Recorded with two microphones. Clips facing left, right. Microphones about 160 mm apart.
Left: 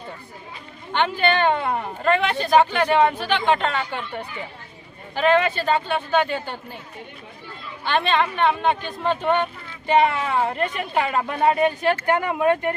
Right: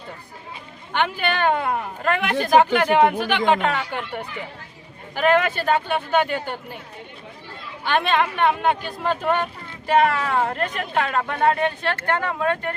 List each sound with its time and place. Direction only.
0.9 s a woman's voice: 10° right (ahead or behind)
7.9 s speech: 10° right (ahead or behind); by 12.7 s 15° left (ahead or behind)